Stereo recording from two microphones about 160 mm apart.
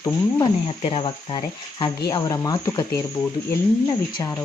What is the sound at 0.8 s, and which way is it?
Speech, 35° left (ahead or behind).